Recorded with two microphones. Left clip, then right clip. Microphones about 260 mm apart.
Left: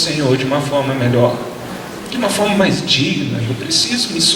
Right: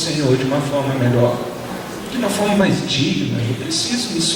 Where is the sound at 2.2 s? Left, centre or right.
Centre.